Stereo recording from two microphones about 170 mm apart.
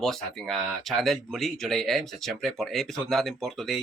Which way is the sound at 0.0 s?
Centre (ahead or behind).